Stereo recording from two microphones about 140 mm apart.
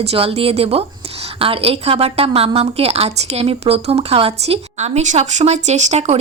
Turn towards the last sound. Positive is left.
turn(degrees=-55)  # may be behind; listen again after turning